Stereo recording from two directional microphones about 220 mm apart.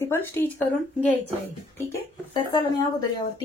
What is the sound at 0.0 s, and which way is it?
Speech, 10° left (ahead or behind).